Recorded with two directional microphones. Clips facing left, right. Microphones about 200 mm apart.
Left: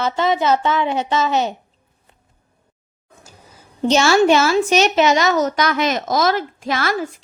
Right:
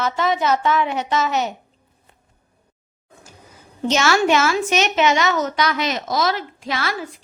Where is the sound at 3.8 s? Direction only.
30° left (ahead or behind).